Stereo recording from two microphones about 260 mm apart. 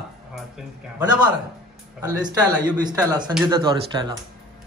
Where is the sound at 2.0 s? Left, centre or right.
Centre.